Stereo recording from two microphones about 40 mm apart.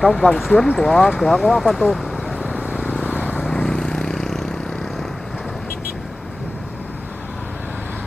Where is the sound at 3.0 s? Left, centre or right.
Left.